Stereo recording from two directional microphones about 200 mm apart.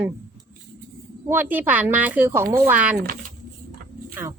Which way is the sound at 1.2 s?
10° right (ahead or behind).